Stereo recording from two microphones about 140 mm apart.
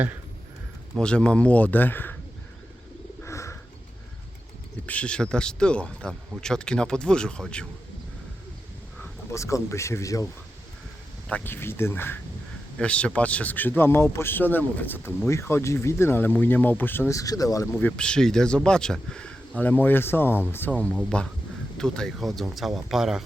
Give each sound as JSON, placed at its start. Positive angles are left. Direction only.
{"t": 0.9, "sound": "speech", "side_deg": 5}
{"t": 3.2, "sound": "bird", "side_deg": 20}
{"t": 4.9, "sound": "speech", "side_deg": 10}
{"t": 9.0, "sound": "speech", "side_deg": 20}
{"t": 11.3, "sound": "speech", "side_deg": 15}
{"t": 17.7, "sound": "speech", "side_deg": 10}